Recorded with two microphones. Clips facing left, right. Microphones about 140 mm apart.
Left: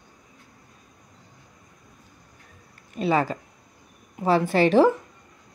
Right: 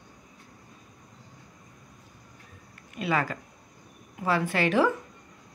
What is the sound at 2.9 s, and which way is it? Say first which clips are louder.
A woman's voice: left 5 dB; 30° left (ahead or behind).